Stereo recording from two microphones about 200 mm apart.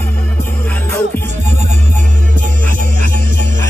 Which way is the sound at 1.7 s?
40° right (ahead or behind).